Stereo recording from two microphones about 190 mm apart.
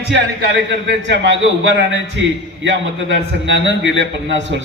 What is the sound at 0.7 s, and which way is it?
A man's voice, 70° right (ahead or behind).